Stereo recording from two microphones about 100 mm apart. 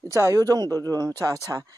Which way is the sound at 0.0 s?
30° right (ahead or behind).